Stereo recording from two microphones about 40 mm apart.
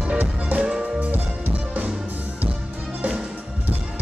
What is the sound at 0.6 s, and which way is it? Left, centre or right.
Music, centre.